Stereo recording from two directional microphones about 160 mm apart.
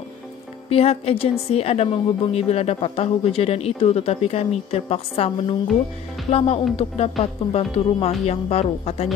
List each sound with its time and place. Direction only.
0.7 s a woman's voice: 40° left (ahead or behind)